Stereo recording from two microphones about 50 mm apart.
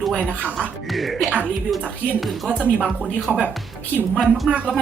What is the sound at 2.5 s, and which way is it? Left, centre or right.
Speech, right.